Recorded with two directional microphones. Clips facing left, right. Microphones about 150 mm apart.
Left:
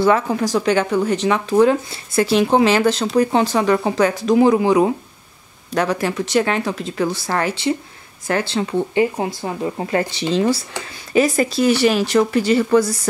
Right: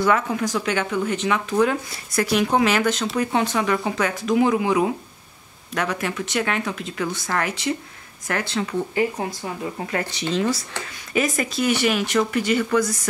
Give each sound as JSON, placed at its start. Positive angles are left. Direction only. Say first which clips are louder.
{"t": 0.0, "sound": "speech", "louder": "left 4 dB", "side_deg": 35}